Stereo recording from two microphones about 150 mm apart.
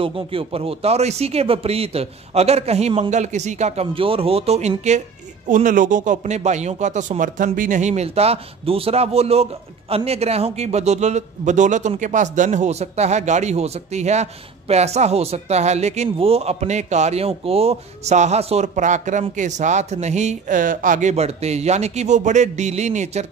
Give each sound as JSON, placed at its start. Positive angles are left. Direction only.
{"t": 0.0, "sound": "speech", "side_deg": -35}
{"t": 5.5, "sound": "speech", "side_deg": -60}